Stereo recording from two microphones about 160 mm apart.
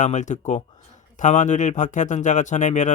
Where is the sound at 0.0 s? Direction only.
50° left (ahead or behind).